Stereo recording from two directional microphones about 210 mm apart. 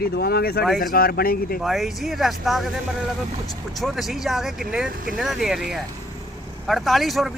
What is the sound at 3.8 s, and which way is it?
Speech, centre (ahead or behind).